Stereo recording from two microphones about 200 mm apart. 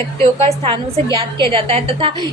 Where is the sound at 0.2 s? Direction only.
30° right (ahead or behind).